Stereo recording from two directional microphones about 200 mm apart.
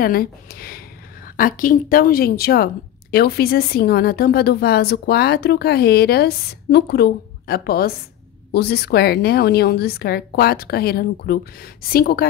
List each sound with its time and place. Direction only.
0.0 s a woman's voice: 50° left (ahead or behind)